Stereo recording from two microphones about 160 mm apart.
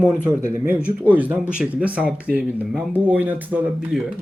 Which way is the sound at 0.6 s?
10° right (ahead or behind).